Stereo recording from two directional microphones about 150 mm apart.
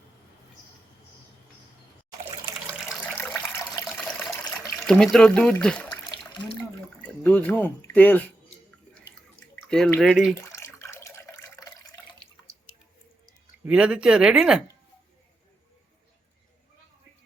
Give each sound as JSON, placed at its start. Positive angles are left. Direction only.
{"t": 3.2, "sound": "water", "side_deg": 10}
{"t": 3.8, "sound": "water", "side_deg": 0}
{"t": 4.8, "sound": "speech", "side_deg": 0}
{"t": 7.3, "sound": "speech", "side_deg": 10}
{"t": 9.6, "sound": "speech", "side_deg": 5}
{"t": 10.5, "sound": "water", "side_deg": 20}
{"t": 13.2, "sound": "speech", "side_deg": -5}